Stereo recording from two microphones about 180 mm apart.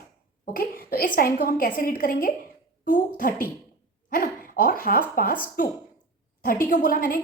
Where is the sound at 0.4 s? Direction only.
55° left (ahead or behind).